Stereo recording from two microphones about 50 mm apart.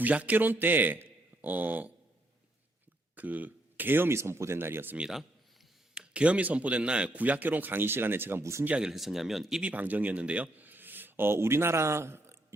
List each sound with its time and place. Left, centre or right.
0.0 s a man's voice: right
3.2 s speech: right
4.2 s speech: right
4.5 s speech: right
5.9 s speech: centre
7.1 s speech: right
8.9 s speech: centre
9.6 s a man's voice: right